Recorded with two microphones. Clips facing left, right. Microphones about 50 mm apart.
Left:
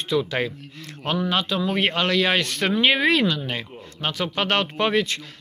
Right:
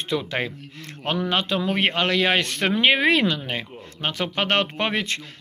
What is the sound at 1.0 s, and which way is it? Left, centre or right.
Speech, right.